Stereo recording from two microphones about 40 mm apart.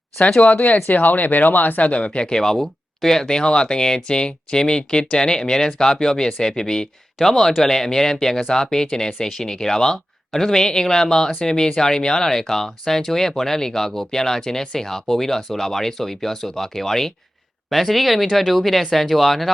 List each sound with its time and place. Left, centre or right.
0.9 s speech: left
1.9 s speech: left; by 19.5 s centre